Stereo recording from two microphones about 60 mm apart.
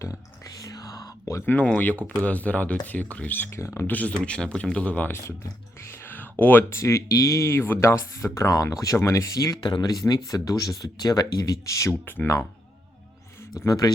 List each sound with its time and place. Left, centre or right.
0.4 s whispering: left
1.6 s speech: left
4.1 s speech: centre
6.1 s a sound: left
6.7 s speech: left
12.0 s speech: left
13.7 s speech: left